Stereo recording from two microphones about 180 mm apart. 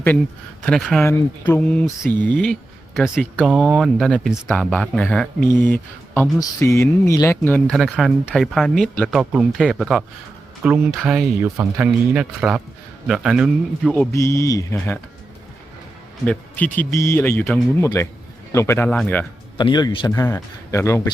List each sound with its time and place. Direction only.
0.6 s speech: centre (ahead or behind)
1.0 s speech: 15° left (ahead or behind); by 13.9 s 5° right (ahead or behind)
14.1 s speech: 15° left (ahead or behind)
16.2 s speech: 10° left (ahead or behind)
19.5 s a man's voice: 25° left (ahead or behind)